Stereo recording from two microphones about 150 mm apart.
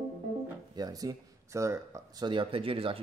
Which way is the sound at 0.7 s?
25° right (ahead or behind).